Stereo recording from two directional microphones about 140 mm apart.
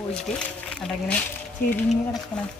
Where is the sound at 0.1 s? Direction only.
5° left (ahead or behind).